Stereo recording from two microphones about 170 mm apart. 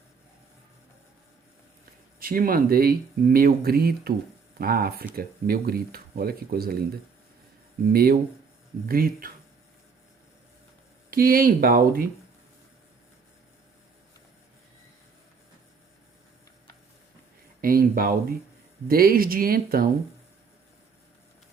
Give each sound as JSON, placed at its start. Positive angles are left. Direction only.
{"t": 2.1, "sound": "speech", "side_deg": -60}
{"t": 7.9, "sound": "speech", "side_deg": -60}
{"t": 11.1, "sound": "speech", "side_deg": -60}
{"t": 17.6, "sound": "speech", "side_deg": -60}